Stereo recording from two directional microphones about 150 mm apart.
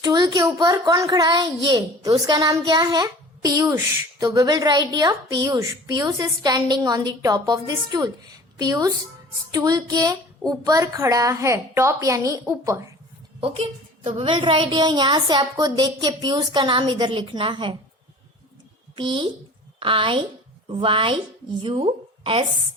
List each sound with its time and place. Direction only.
0.0 s a woman's voice: 25° right (ahead or behind)
13.4 s a woman's voice: 35° right (ahead or behind)
18.9 s a woman's voice: 35° right (ahead or behind)